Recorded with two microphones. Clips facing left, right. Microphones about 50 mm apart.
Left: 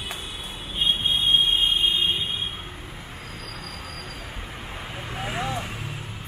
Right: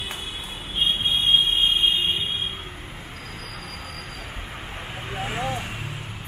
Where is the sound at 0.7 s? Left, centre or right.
Right.